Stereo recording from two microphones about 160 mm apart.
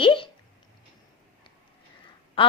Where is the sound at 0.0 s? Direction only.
35° left (ahead or behind).